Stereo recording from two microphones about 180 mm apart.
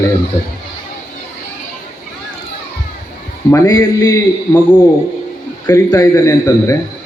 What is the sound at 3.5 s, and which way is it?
Speech, 20° left (ahead or behind).